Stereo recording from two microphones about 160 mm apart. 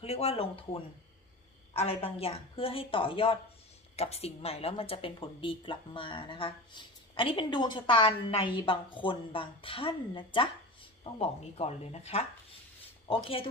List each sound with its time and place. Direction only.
0.0 s speech: 40° left (ahead or behind)
1.8 s speech: 35° left (ahead or behind)